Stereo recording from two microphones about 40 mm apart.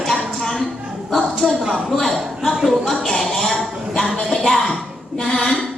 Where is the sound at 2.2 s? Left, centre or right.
Centre.